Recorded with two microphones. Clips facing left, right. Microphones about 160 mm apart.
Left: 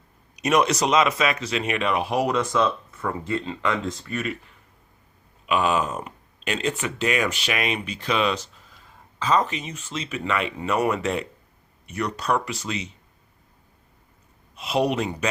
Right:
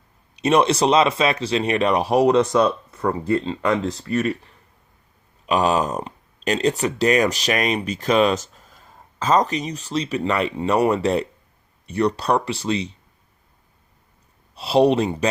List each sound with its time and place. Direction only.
0.3 s speech: 30° right (ahead or behind)
2.1 s speech: 30° right (ahead or behind)
2.6 s speech: 40° right (ahead or behind)
5.5 s speech: 35° right (ahead or behind)
14.5 s speech: 35° right (ahead or behind)